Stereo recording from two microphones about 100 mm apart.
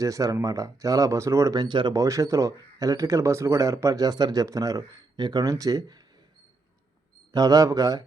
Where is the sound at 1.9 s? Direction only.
35° right (ahead or behind).